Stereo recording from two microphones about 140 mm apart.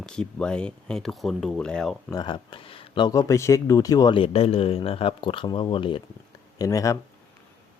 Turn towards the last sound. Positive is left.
turn(degrees=25)  # may be behind; listen again after turning